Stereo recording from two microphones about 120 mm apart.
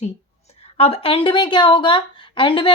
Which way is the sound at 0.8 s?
55° left (ahead or behind).